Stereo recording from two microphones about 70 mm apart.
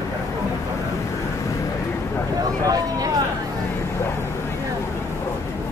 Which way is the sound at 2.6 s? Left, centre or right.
Right.